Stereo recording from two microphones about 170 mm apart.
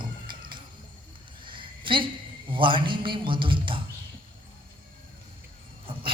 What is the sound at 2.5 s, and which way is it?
A man's voice, 30° right (ahead or behind).